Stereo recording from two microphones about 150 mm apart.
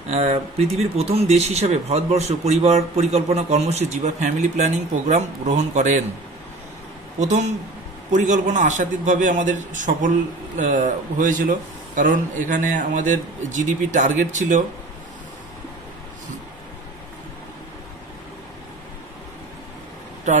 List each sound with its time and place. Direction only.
0.1 s speech: 45° right (ahead or behind)
7.2 s speech: 50° right (ahead or behind)